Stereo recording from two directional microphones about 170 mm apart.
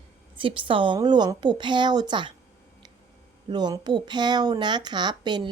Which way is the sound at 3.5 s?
25° right (ahead or behind).